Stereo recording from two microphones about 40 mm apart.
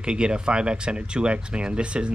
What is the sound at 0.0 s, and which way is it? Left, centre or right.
Speech, right.